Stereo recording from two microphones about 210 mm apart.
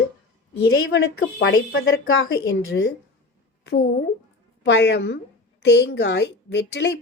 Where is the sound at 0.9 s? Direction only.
60° left (ahead or behind).